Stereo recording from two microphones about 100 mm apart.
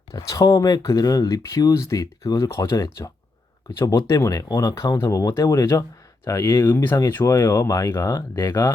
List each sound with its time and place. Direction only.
0.1 s speech: 35° left (ahead or behind)